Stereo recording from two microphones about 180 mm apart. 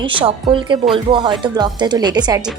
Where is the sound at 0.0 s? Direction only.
30° right (ahead or behind).